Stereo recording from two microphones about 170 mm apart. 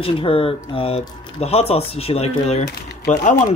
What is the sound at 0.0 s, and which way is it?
Speech, 30° left (ahead or behind).